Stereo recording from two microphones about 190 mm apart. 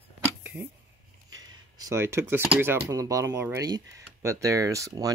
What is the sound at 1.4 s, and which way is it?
Speech, 20° right (ahead or behind).